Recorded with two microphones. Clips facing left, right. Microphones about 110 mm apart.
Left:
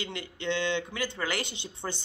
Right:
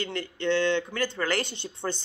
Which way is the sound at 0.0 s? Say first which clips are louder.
Right 5 dB; 15° left (ahead or behind).